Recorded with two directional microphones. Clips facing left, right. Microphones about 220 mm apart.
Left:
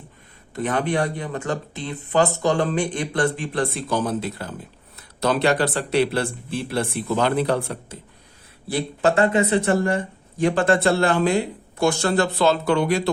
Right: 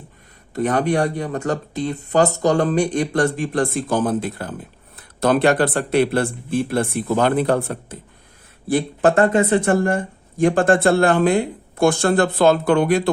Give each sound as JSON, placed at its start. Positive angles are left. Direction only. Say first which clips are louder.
{"t": 0.5, "sound": "speech", "louder": "right 4 dB", "side_deg": -40}